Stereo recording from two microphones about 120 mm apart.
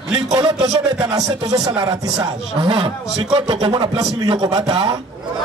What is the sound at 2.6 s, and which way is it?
Speech, 45° right (ahead or behind).